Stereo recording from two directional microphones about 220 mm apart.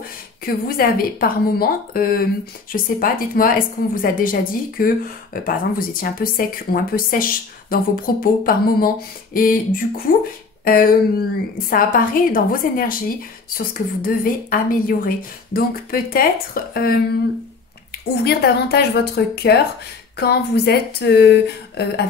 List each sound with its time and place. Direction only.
0.5 s a woman's voice: 40° left (ahead or behind)
18.1 s speech: 45° left (ahead or behind)